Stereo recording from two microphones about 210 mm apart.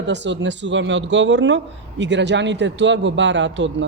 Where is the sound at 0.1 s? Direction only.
60° right (ahead or behind).